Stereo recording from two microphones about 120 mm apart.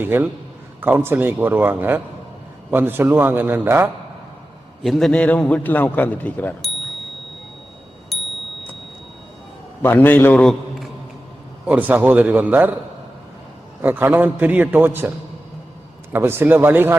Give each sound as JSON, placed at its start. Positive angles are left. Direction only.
{"t": 0.0, "sound": "a man's voice", "side_deg": -15}
{"t": 4.8, "sound": "a man's voice", "side_deg": 0}
{"t": 8.1, "sound": "a sound", "side_deg": 0}
{"t": 9.8, "sound": "a man's voice", "side_deg": 20}
{"t": 10.3, "sound": "a man's voice", "side_deg": 5}
{"t": 11.6, "sound": "a man's voice", "side_deg": -10}
{"t": 13.8, "sound": "a man's voice", "side_deg": -15}
{"t": 16.1, "sound": "a man's voice", "side_deg": -20}